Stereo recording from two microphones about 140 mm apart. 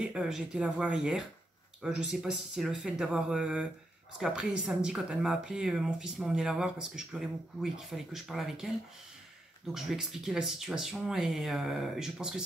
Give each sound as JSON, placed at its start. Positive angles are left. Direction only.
{"t": 0.1, "sound": "speech", "side_deg": -5}